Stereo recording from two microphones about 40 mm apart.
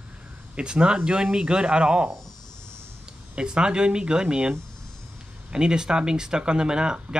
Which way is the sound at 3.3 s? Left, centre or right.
Right.